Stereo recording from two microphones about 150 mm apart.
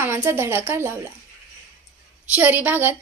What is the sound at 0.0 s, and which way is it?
Speech, 15° right (ahead or behind).